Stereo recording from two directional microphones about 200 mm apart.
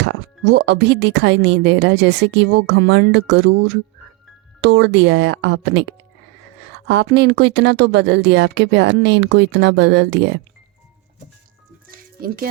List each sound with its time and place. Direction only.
0.0 s speech: 60° right (ahead or behind)
11.9 s music: 45° right (ahead or behind)